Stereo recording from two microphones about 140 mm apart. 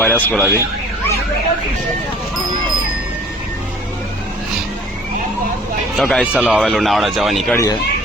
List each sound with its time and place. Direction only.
0.0 s speech: 10° left (ahead or behind)
6.0 s speech: centre (ahead or behind)
7.5 s speech: 25° left (ahead or behind)